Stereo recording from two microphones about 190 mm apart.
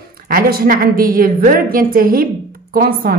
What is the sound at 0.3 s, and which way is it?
A woman's voice, 50° right (ahead or behind).